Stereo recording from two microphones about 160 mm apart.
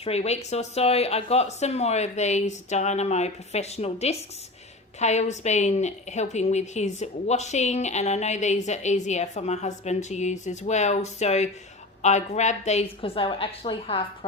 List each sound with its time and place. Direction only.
0.0 s a woman's voice: 40° left (ahead or behind)